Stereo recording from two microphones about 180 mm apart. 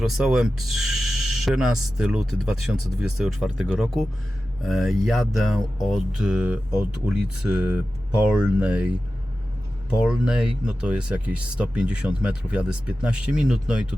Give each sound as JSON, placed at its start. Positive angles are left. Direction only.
{"t": 0.0, "sound": "speech", "side_deg": -5}
{"t": 10.0, "sound": "speech", "side_deg": -5}